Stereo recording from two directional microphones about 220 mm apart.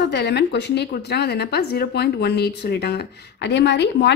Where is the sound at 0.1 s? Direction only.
50° left (ahead or behind).